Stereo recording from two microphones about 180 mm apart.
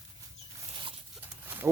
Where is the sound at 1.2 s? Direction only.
10° right (ahead or behind).